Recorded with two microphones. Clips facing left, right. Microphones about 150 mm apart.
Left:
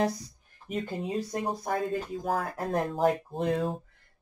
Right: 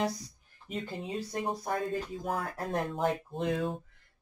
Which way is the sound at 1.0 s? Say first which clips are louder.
Left 1 dB; 35° left (ahead or behind).